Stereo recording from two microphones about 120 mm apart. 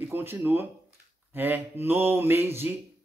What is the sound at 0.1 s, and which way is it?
Speech, 20° right (ahead or behind).